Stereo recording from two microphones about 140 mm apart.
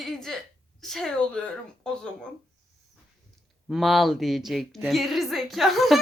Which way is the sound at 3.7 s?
Centre (ahead or behind).